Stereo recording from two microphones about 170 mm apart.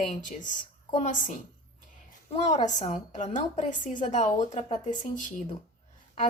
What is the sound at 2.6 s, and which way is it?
A woman's voice, 45° left (ahead or behind).